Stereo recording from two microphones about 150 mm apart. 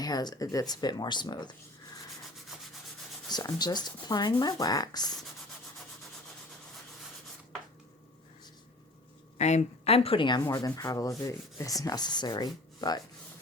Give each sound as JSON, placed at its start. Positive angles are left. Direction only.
{"t": 0.0, "sound": "sanding", "side_deg": 25}
{"t": 3.2, "sound": "sanding", "side_deg": 25}
{"t": 9.4, "sound": "a woman's voice", "side_deg": 50}
{"t": 10.4, "sound": "sanding", "side_deg": 20}